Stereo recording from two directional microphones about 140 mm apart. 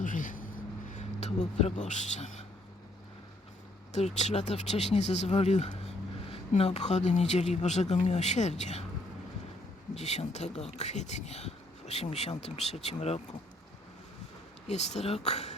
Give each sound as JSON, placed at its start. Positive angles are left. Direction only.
{"t": 0.0, "sound": "vehicle", "side_deg": 70}
{"t": 0.9, "sound": "speech", "side_deg": 55}
{"t": 3.9, "sound": "speech", "side_deg": 55}
{"t": 9.9, "sound": "speech", "side_deg": 50}
{"t": 14.7, "sound": "speech", "side_deg": 50}